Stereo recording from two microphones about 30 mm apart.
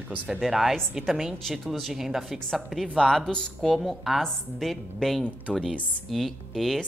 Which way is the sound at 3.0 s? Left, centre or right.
Centre.